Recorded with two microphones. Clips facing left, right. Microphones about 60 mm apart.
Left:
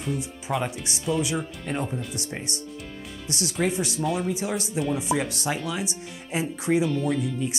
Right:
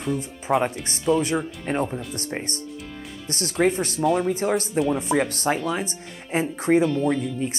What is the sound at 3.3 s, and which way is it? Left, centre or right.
Speech, right.